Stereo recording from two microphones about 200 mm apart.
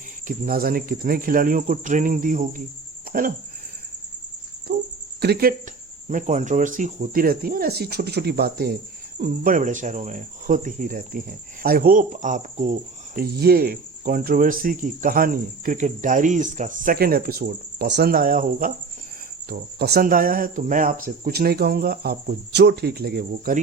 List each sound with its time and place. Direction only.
0.3 s speech: 45° right (ahead or behind)
4.7 s speech: 55° right (ahead or behind)
6.1 s speech: 40° right (ahead or behind)
13.1 s speech: 50° right (ahead or behind)